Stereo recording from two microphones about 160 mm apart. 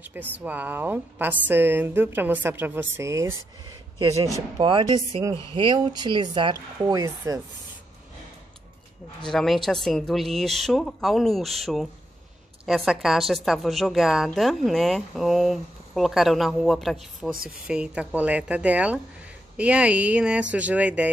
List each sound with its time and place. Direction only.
0.0 s a woman's voice: 10° right (ahead or behind)
9.2 s a woman's voice: 5° left (ahead or behind)